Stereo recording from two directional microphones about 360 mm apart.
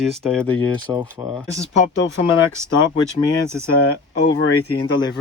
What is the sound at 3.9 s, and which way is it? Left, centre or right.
Speech, left.